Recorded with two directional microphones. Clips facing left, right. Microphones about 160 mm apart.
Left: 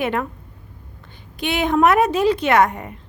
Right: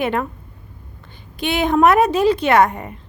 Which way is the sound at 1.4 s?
30° right (ahead or behind).